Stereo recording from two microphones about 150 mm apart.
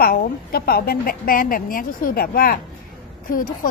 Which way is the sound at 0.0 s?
90° left.